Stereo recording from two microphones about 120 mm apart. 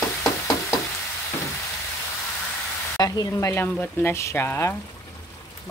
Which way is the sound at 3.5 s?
15° left (ahead or behind).